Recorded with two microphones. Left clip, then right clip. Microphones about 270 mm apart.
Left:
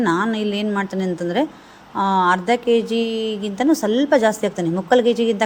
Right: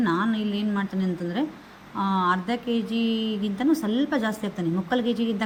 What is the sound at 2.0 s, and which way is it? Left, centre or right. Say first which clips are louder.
Speech: left 7 dB; left.